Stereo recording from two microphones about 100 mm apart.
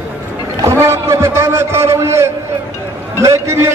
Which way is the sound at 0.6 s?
25° right (ahead or behind).